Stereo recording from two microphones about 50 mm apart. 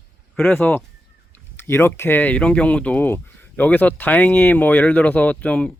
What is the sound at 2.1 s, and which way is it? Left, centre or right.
Speech, left.